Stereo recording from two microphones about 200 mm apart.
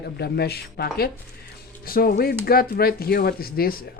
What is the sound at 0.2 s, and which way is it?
Speech, 55° left (ahead or behind).